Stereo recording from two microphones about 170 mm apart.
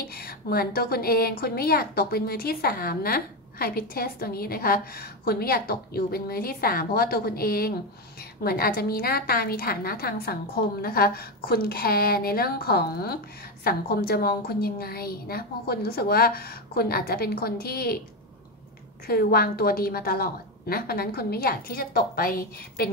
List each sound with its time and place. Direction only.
0.0 s a woman's voice: 60° left (ahead or behind)
19.0 s a woman's voice: 60° left (ahead or behind)